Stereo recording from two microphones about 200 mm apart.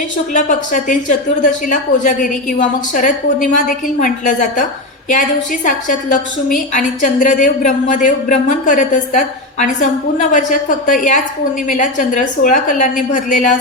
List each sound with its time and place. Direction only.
0.3 s a woman's voice: 40° left (ahead or behind)
5.6 s a woman's voice: 40° left (ahead or behind)